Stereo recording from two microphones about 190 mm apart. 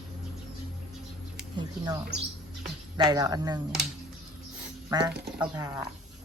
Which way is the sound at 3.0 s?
20° right (ahead or behind).